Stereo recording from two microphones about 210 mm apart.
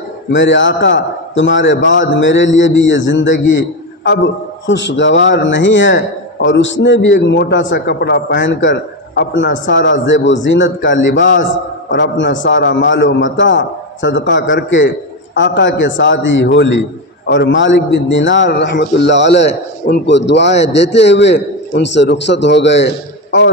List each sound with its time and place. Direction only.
0.3 s a man's voice: 60° left (ahead or behind)